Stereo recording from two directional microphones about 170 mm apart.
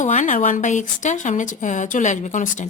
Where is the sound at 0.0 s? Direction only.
45° left (ahead or behind).